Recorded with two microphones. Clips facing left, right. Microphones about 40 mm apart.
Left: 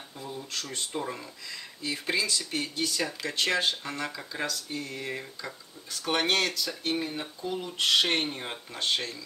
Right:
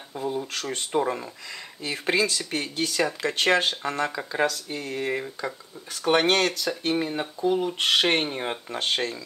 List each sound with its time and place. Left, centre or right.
0.1 s speech: right
8.6 s speech: right